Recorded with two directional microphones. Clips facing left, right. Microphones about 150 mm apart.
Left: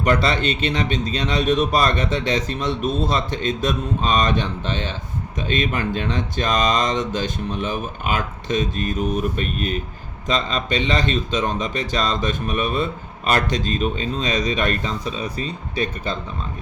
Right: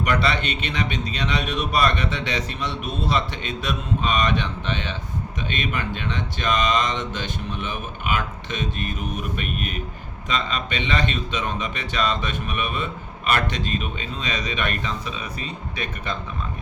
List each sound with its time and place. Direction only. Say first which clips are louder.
0.0 s speech: left 3 dB; 35° left (ahead or behind)